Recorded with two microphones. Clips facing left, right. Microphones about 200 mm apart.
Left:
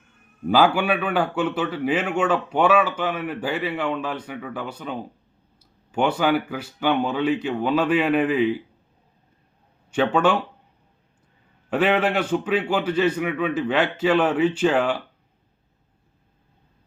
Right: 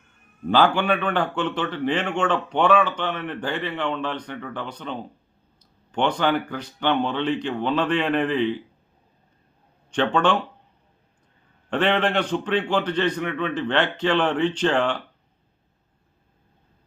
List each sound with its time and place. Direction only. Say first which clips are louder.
0.4 s a man's voice: left 1 dB; 5° left (ahead or behind)
9.9 s a man's voice: left 1 dB; 5° left (ahead or behind)
11.7 s a man's voice: left 1 dB; 5° left (ahead or behind)